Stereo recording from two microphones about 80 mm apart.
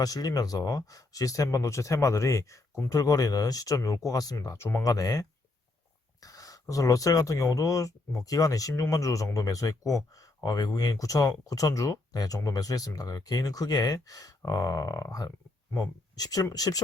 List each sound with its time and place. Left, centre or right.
0.0 s speech: left
4.9 s speech: left